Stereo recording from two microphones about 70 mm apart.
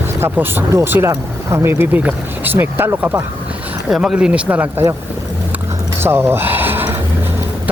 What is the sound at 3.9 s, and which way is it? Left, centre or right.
Speech, centre.